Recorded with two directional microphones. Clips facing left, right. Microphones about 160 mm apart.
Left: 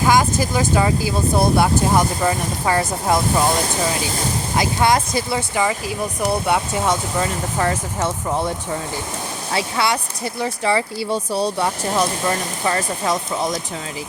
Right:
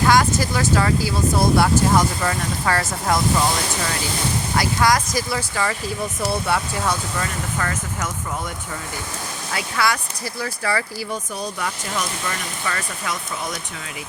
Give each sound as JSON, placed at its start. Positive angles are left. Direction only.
{"t": 0.0, "sound": "speech", "side_deg": 15}
{"t": 4.5, "sound": "speech", "side_deg": 20}